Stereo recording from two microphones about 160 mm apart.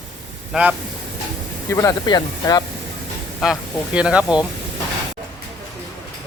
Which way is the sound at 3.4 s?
5° right (ahead or behind).